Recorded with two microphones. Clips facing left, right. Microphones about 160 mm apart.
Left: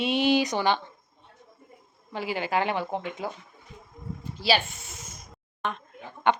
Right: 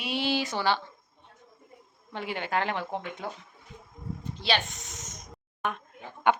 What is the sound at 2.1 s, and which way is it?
Speech, 5° left (ahead or behind).